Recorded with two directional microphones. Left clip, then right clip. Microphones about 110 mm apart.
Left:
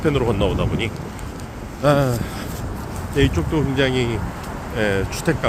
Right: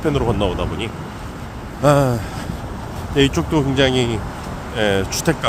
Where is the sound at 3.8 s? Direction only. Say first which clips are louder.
Right 3 dB; 35° right (ahead or behind).